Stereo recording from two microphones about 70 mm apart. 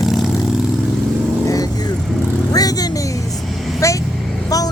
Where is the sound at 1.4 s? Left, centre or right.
Left.